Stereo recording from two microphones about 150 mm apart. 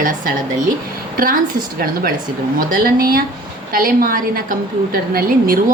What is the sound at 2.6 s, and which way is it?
A woman's voice, 70° right (ahead or behind).